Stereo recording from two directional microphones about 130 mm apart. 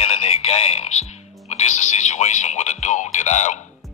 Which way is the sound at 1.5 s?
60° left (ahead or behind).